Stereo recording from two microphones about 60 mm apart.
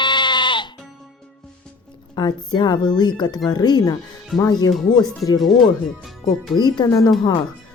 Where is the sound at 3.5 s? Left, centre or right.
Left.